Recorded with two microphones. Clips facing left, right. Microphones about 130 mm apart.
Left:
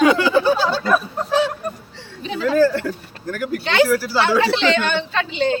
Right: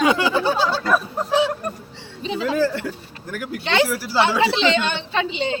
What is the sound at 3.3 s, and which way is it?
A woman's voice, 15° right (ahead or behind).